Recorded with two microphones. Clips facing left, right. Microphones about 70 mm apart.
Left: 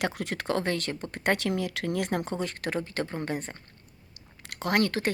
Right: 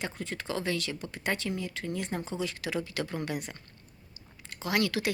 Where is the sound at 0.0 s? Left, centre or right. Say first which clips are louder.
Left 6 dB; left.